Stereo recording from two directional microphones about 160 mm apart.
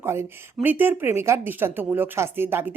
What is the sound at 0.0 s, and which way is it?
A woman's voice, 15° right (ahead or behind).